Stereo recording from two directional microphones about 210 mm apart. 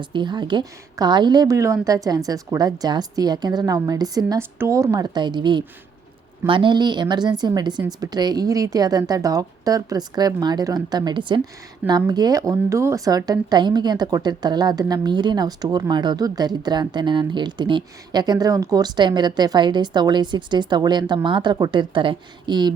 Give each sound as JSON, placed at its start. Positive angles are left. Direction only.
{"t": 0.0, "sound": "a woman's voice", "side_deg": -20}